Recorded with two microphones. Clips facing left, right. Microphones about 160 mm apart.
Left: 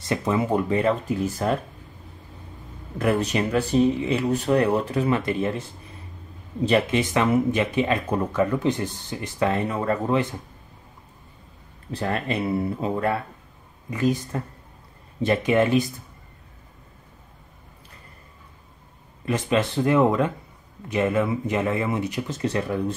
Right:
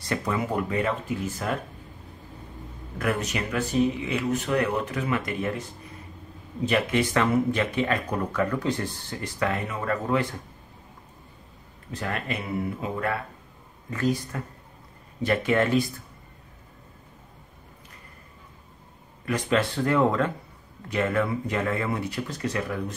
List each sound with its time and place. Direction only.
0.1 s speech: 25° left (ahead or behind)
3.0 s speech: 30° left (ahead or behind)
11.9 s speech: 30° left (ahead or behind)
13.8 s speech: 15° left (ahead or behind)
14.3 s speech: 30° left (ahead or behind)
15.2 s speech: 20° left (ahead or behind)
19.2 s speech: 20° left (ahead or behind)